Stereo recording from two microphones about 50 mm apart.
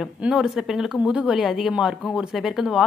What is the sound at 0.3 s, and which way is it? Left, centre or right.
A woman's voice, centre.